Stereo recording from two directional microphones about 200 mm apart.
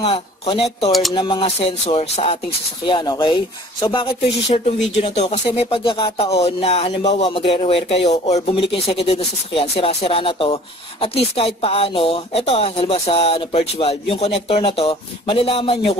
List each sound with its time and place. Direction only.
0.0 s speech: 25° left (ahead or behind)